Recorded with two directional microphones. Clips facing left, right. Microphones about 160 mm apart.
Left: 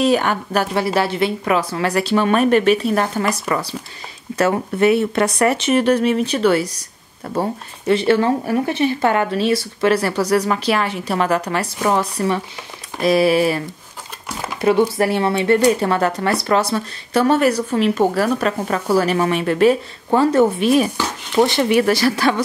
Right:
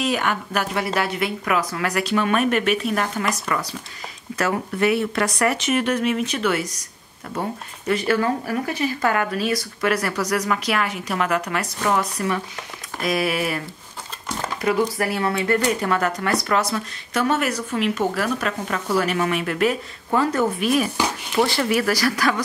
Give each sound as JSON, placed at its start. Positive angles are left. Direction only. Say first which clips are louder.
{"t": 0.0, "sound": "speech", "louder": "left 6 dB", "side_deg": 30}
{"t": 14.3, "sound": "a sound", "louder": "even", "side_deg": 10}
{"t": 14.6, "sound": "speech", "louder": "left 6 dB", "side_deg": 30}